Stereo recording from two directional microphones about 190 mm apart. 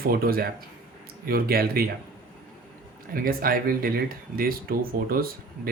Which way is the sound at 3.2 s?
50° right (ahead or behind).